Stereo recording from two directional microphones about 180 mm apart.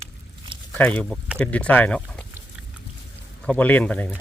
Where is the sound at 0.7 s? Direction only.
10° left (ahead or behind).